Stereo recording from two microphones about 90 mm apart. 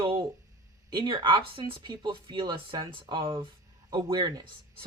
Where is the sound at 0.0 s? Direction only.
65° right (ahead or behind).